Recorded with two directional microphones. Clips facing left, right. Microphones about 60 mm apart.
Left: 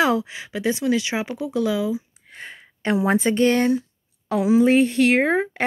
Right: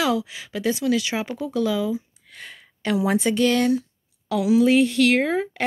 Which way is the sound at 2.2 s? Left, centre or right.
Left.